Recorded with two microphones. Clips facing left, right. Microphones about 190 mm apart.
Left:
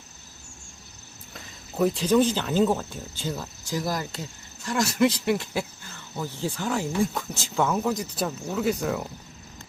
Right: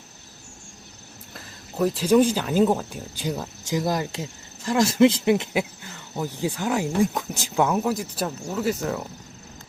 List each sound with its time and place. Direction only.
1.3 s speech: centre (ahead or behind)